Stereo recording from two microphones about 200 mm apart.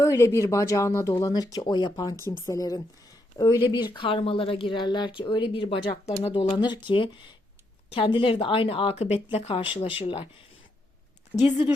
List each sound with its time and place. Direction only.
0.0 s speech: 15° left (ahead or behind)
11.4 s speech: 25° left (ahead or behind)